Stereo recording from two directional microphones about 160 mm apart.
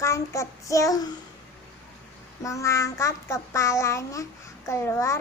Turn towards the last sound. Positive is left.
turn(degrees=15)  # may be behind; listen again after turning